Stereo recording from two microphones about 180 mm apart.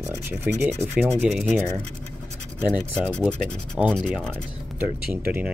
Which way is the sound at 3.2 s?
5° left (ahead or behind).